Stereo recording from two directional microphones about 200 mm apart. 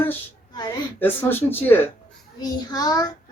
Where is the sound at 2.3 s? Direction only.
20° left (ahead or behind).